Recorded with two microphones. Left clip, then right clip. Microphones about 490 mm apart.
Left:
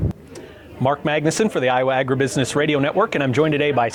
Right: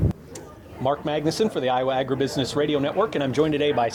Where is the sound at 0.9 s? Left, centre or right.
Left.